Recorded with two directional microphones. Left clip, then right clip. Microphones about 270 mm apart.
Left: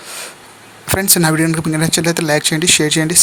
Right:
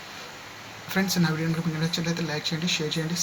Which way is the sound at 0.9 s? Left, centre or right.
Left.